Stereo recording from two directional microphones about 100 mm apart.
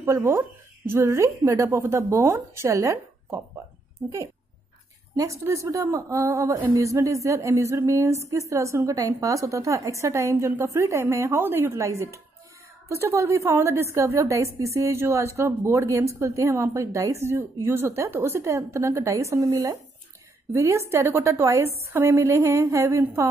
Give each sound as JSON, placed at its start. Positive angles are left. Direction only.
{"t": 0.0, "sound": "a woman's voice", "side_deg": -30}
{"t": 5.1, "sound": "a woman's voice", "side_deg": -35}